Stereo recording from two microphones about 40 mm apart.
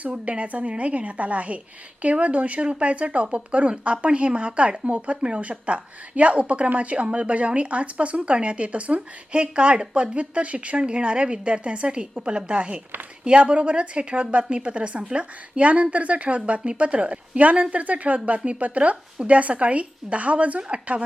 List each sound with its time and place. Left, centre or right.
0.1 s a woman's voice: right